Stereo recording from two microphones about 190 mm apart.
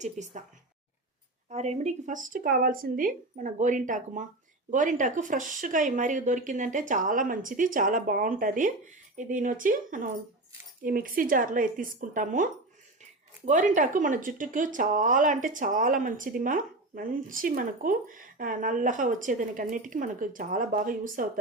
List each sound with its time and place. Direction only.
0.0 s speech: 40° right (ahead or behind)
1.5 s speech: 35° right (ahead or behind)